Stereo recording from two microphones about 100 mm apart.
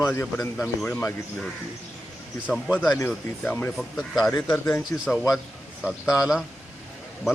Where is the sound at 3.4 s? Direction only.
20° left (ahead or behind).